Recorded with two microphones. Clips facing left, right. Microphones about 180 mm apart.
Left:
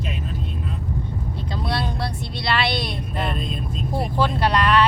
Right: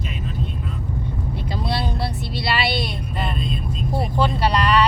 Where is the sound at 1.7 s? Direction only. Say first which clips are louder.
Right 1 dB; 10° right (ahead or behind).